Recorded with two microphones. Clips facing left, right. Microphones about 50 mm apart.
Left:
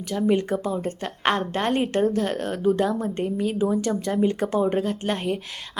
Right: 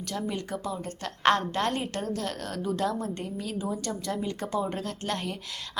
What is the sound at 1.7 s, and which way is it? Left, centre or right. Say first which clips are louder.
A woman's voice: left 10 dB; left.